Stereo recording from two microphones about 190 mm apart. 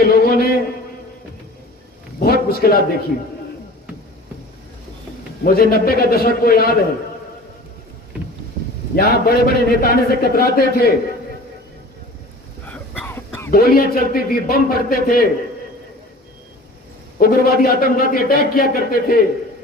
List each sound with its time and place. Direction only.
0.0 s a sound: 55° left (ahead or behind)
2.1 s a man's voice: 50° left (ahead or behind)
5.4 s a man's voice: 50° left (ahead or behind)
9.0 s a man's voice: 55° left (ahead or behind)
12.6 s cough: 10° left (ahead or behind)
13.5 s a man's voice: 50° left (ahead or behind)
17.2 s a man's voice: 50° left (ahead or behind)